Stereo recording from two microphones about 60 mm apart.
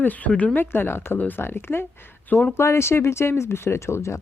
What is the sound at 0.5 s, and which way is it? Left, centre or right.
Speech, left.